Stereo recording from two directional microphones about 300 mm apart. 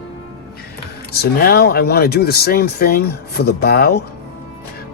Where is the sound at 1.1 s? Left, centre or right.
Left.